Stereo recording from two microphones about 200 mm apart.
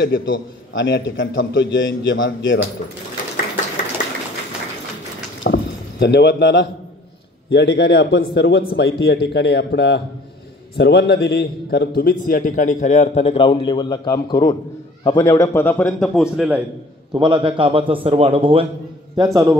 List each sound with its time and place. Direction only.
0.0 s a man's voice: 50° left (ahead or behind)
0.7 s a man's voice: 60° left (ahead or behind)
4.0 s sewing machine: 40° left (ahead or behind)
5.4 s rowboat: 65° left (ahead or behind)
7.4 s a man's voice: 60° left (ahead or behind); by 16.6 s 5° right (ahead or behind)
17.1 s a man's voice: 25° right (ahead or behind)